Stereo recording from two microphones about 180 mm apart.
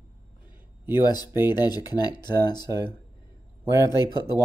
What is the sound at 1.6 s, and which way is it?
Speech, 20° left (ahead or behind).